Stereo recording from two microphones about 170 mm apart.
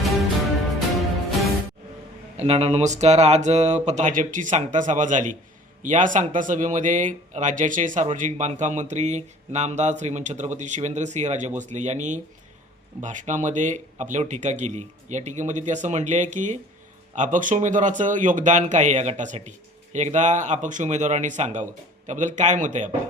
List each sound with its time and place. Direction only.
2.4 s speech: 40° right (ahead or behind)